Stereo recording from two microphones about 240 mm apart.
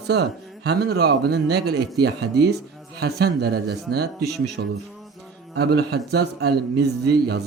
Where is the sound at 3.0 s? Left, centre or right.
Right.